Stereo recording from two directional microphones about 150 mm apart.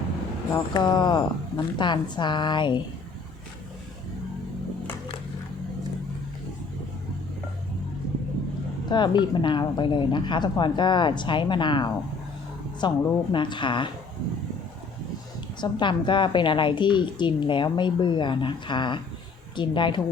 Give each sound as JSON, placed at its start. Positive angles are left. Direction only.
{"t": 0.5, "sound": "a woman's voice", "side_deg": 30}
{"t": 8.9, "sound": "a woman's voice", "side_deg": 30}
{"t": 15.6, "sound": "a woman's voice", "side_deg": 30}